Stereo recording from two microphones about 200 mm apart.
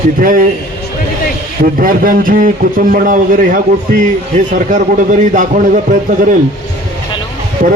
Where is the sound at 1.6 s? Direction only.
45° right (ahead or behind).